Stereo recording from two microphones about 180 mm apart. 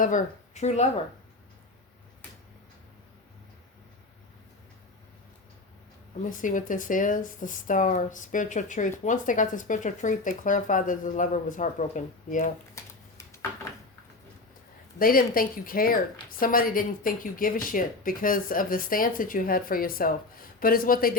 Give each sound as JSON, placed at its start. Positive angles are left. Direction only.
{"t": 0.0, "sound": "speech", "side_deg": 45}
{"t": 6.2, "sound": "speech", "side_deg": 45}
{"t": 12.7, "sound": "a sound", "side_deg": 15}
{"t": 14.9, "sound": "speech", "side_deg": 55}